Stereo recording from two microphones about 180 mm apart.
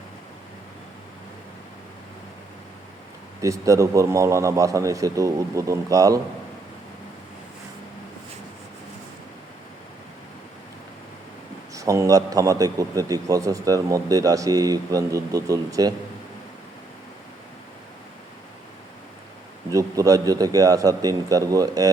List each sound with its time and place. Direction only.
3.4 s a man's voice: 15° right (ahead or behind)
11.7 s a man's voice: 15° right (ahead or behind)
19.7 s a man's voice: 20° right (ahead or behind)